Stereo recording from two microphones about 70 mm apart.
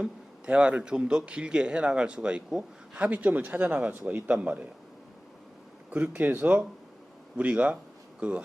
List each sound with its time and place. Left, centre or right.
0.0 s a man's voice: centre
5.9 s a man's voice: right